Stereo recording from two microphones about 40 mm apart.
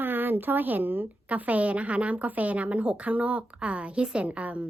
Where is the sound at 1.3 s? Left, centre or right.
Right.